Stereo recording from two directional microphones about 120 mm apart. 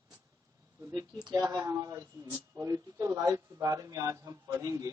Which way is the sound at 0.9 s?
30° right (ahead or behind).